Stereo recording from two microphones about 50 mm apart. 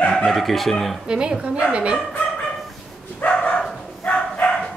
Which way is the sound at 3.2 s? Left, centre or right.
Left.